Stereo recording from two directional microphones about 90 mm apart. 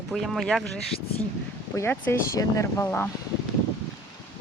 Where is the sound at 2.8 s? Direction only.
20° left (ahead or behind).